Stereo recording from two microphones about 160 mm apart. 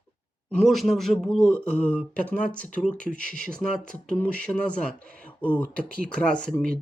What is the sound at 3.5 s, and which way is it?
Speech, 5° left (ahead or behind).